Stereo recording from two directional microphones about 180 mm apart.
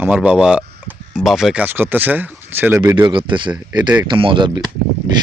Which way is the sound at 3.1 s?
25° right (ahead or behind).